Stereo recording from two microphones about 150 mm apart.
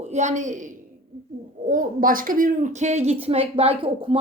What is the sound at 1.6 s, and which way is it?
Speech, 65° right (ahead or behind).